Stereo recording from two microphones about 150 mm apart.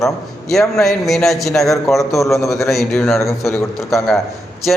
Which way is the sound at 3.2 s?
20° left (ahead or behind).